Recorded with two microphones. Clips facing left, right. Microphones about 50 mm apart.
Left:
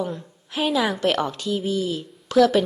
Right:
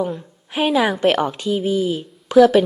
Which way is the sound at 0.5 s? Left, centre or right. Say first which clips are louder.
Right 4 dB; right.